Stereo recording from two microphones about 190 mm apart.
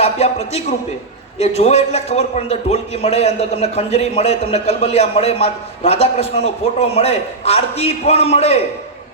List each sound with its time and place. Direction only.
0.0 s a man's voice: 35° left (ahead or behind)